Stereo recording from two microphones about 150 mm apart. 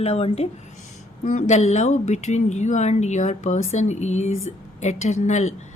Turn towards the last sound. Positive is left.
turn(degrees=50)  # may be behind; listen again after turning